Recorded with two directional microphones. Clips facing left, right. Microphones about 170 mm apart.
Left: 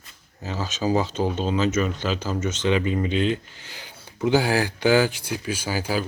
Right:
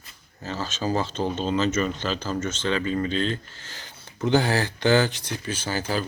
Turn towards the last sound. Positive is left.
turn(degrees=10)  # may be behind; listen again after turning